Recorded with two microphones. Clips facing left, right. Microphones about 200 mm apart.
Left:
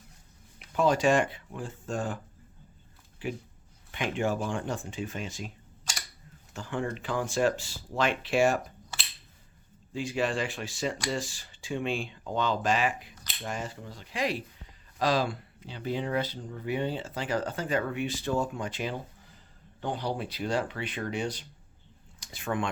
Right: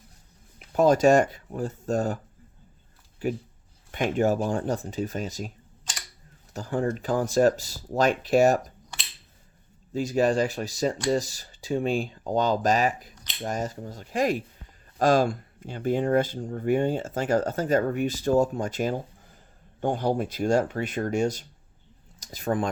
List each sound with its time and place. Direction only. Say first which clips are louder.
0.7 s speech: right 6 dB; 40° right (ahead or behind)
3.2 s speech: right 6 dB; 40° right (ahead or behind)
6.5 s speech: right 6 dB; 40° right (ahead or behind)
8.9 s a sound: even; 5° left (ahead or behind)
9.9 s speech: right 7 dB; 40° right (ahead or behind)